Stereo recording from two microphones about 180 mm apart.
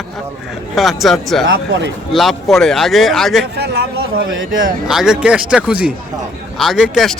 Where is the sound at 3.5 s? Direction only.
65° right (ahead or behind); by 4.6 s 90° right.